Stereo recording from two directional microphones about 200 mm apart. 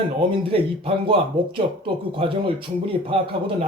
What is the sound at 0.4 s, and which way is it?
Speech, 25° right (ahead or behind).